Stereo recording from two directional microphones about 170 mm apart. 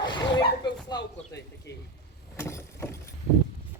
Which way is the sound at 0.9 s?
85° left.